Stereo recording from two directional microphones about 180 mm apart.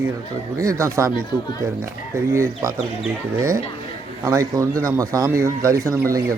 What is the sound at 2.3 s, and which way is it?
Speech, 15° right (ahead or behind).